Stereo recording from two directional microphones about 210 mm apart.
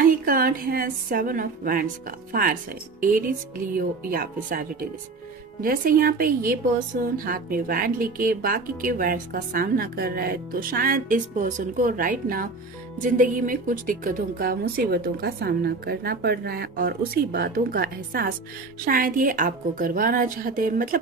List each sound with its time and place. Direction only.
0.0 s a woman's voice: 40° right (ahead or behind)